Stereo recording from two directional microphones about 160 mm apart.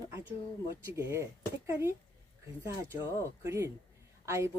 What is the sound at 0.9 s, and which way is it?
Speech, 20° right (ahead or behind).